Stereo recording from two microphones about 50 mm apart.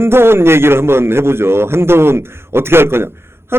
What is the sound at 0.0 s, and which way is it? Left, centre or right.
Speech, right.